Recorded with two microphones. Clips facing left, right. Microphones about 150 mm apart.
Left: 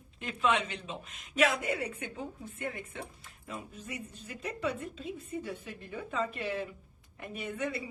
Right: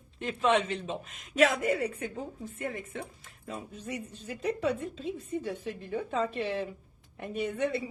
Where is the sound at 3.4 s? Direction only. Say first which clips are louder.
Right 4 dB; 35° right (ahead or behind).